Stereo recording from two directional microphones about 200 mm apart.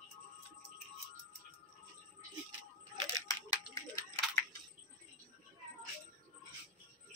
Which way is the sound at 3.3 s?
15° left (ahead or behind).